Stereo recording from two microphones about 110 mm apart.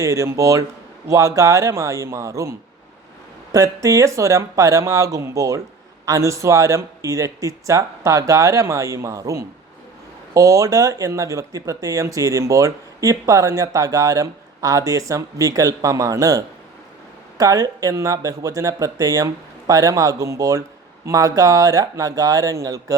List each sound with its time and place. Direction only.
0.0 s speech: 30° right (ahead or behind)